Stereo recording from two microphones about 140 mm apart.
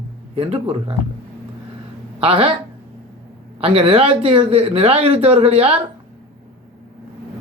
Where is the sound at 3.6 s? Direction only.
45° right (ahead or behind).